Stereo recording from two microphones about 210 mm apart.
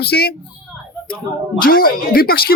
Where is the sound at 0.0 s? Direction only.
50° left (ahead or behind).